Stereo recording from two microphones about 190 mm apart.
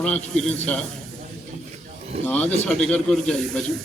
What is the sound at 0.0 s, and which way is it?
Speech, 5° left (ahead or behind).